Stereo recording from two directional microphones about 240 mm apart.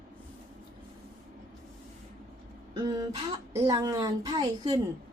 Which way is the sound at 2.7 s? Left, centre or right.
Centre.